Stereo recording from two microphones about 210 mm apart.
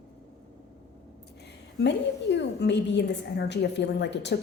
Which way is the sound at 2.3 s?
55° left (ahead or behind).